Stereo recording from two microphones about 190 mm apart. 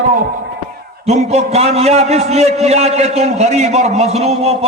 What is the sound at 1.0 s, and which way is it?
A man's voice, 35° right (ahead or behind).